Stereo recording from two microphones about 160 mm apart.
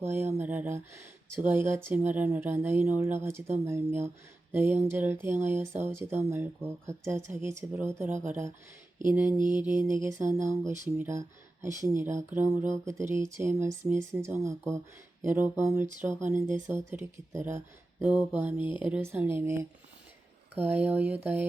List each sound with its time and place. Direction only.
0.3 s speech: 10° right (ahead or behind)